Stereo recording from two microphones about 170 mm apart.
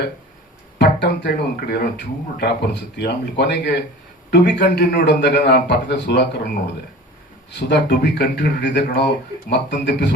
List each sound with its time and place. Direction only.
0.8 s a man's voice: 80° left
7.5 s a man's voice: 80° left